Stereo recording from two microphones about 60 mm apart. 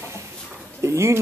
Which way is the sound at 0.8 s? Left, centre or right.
Right.